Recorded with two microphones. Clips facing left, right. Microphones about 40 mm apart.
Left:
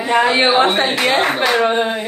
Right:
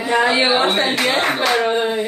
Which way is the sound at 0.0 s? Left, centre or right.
Left.